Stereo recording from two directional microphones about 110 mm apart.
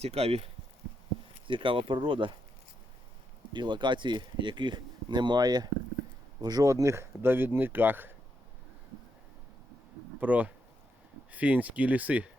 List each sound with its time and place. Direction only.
0.0 s speech: 65° right (ahead or behind)
1.5 s speech: 50° right (ahead or behind)
3.5 s speech: 45° right (ahead or behind); by 8.1 s 20° right (ahead or behind)
10.2 s speech: 15° right (ahead or behind)